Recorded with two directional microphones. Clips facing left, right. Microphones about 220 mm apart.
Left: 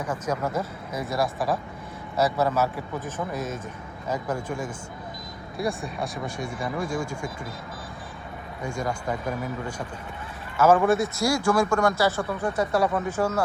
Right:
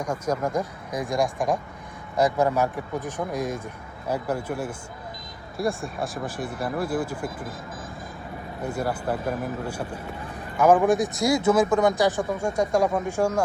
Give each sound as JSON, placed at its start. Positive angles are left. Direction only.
{"t": 0.3, "sound": "speech", "side_deg": 10}
{"t": 0.6, "sound": "speech", "side_deg": -15}
{"t": 8.6, "sound": "speech", "side_deg": -5}
{"t": 10.6, "sound": "speech", "side_deg": -15}